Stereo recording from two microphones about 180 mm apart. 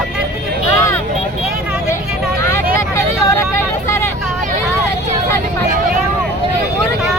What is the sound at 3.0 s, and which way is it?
Vehicle, 15° left (ahead or behind).